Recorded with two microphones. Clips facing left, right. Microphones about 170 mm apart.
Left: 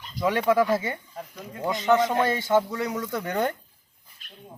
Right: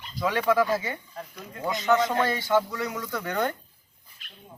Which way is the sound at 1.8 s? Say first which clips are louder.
Left 2 dB; 25° left (ahead or behind).